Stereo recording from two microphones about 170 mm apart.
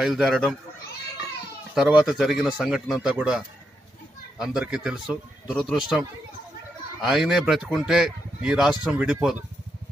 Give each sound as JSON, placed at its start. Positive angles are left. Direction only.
{"t": 0.0, "sound": "speech", "side_deg": 0}
{"t": 1.8, "sound": "speech", "side_deg": -5}